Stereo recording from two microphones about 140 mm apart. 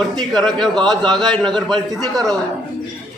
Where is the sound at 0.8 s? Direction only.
30° right (ahead or behind).